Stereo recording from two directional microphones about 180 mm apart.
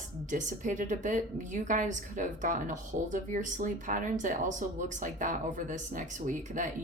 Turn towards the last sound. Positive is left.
turn(degrees=-45)  # may be behind; listen again after turning